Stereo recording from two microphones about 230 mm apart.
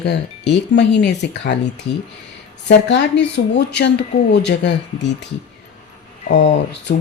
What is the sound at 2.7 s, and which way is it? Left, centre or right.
Speech, left.